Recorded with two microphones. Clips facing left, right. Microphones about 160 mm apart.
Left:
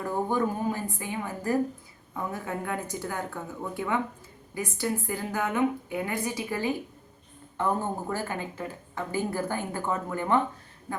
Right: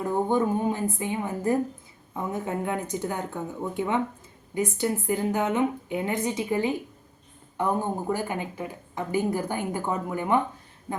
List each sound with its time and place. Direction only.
0.0 s a woman's voice: 20° right (ahead or behind)